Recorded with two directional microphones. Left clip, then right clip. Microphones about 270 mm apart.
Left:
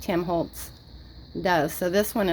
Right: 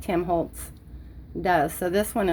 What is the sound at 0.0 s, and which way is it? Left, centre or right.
A woman's voice, left.